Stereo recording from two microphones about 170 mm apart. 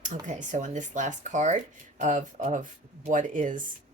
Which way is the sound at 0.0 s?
45° right (ahead or behind).